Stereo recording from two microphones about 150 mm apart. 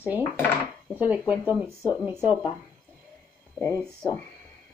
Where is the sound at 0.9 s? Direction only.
10° right (ahead or behind).